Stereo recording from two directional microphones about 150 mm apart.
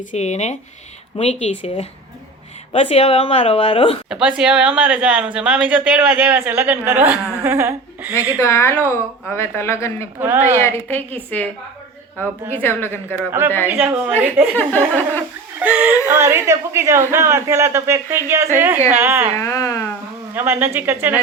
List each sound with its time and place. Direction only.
0.0 s speech: 50° left (ahead or behind); by 3.9 s 35° left (ahead or behind)
4.1 s a woman's voice: 5° right (ahead or behind)
8.4 s a woman's voice: 20° left (ahead or behind)
10.2 s a woman's voice: 15° right (ahead or behind)
10.6 s a woman's voice: 15° left (ahead or behind)
12.5 s a woman's voice: 15° left (ahead or behind)
13.7 s a woman's voice: 10° right (ahead or behind)
14.5 s a woman's voice: 10° left (ahead or behind)
15.5 s a woman's voice: 10° right (ahead or behind)
19.4 s speech: 20° left (ahead or behind)
20.3 s a woman's voice: 15° right (ahead or behind)